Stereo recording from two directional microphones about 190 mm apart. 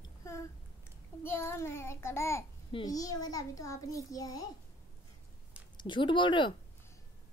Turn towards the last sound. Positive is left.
turn(degrees=25)  # may be behind; listen again after turning